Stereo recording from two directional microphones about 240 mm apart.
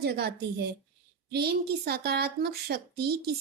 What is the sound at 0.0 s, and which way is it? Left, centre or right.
Speech, right.